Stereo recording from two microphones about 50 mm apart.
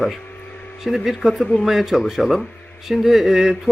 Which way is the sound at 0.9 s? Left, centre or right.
Centre.